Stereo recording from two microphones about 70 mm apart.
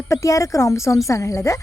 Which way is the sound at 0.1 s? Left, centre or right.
Left.